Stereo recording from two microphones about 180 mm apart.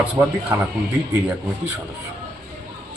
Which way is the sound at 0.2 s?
20° right (ahead or behind).